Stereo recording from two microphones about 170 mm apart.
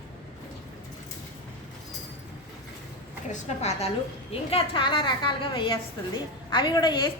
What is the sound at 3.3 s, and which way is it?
A woman's voice, 40° left (ahead or behind).